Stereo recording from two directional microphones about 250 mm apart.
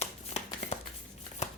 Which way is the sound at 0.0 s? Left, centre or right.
Left.